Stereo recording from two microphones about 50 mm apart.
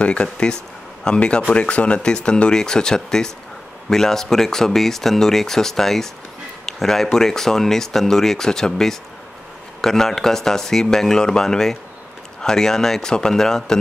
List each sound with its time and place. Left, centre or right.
0.0 s speech: left